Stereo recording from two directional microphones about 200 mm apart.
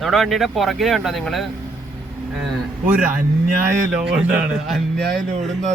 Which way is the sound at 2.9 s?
10° right (ahead or behind).